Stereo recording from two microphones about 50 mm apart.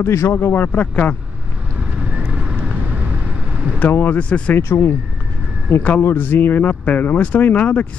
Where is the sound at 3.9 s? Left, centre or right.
Left.